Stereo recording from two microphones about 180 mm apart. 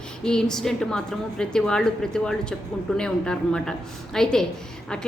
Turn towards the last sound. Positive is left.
turn(degrees=5)  # may be behind; listen again after turning